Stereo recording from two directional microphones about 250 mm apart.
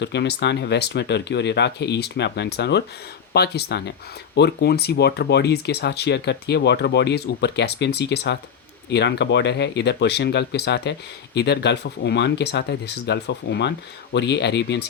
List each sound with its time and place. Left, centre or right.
0.0 s speech: left